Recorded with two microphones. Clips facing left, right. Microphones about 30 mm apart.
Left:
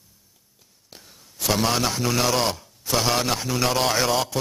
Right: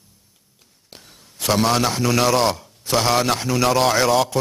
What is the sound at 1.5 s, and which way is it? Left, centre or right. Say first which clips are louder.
A man's voice: right 4 dB; centre.